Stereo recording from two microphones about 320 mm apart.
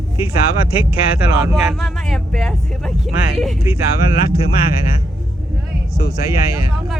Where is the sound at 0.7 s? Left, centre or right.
Centre.